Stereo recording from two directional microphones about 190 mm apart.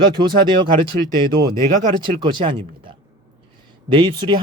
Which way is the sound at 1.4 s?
45° right (ahead or behind).